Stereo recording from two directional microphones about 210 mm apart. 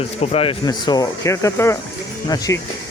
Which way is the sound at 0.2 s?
30° left (ahead or behind).